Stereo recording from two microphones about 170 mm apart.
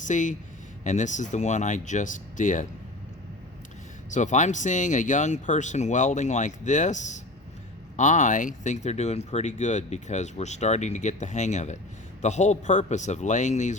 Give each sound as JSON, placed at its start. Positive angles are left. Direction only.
{"t": 0.0, "sound": "speech", "side_deg": 45}
{"t": 4.1, "sound": "speech", "side_deg": 45}